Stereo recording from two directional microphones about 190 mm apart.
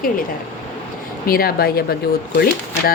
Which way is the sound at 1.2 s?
50° left (ahead or behind).